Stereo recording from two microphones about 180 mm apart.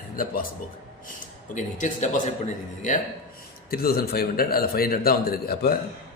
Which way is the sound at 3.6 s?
55° left (ahead or behind).